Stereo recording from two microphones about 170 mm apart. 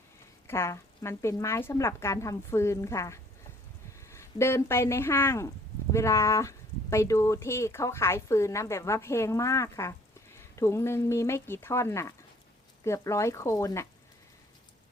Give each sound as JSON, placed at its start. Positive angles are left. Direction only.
{"t": 0.4, "sound": "speech", "side_deg": 15}